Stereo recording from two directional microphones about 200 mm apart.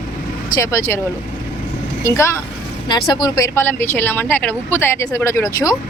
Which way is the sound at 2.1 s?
15° left (ahead or behind).